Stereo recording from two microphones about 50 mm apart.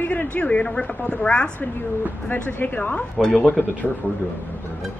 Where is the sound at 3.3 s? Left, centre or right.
Centre.